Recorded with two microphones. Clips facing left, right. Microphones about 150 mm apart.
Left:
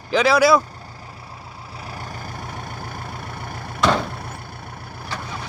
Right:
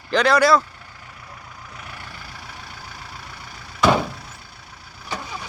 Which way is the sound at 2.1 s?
50° left (ahead or behind).